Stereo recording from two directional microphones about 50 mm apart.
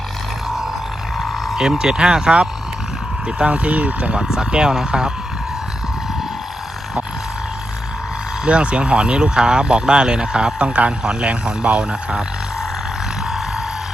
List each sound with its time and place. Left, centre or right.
1.5 s speech: centre; by 4.1 s right
4.1 s speech: centre
8.4 s speech: right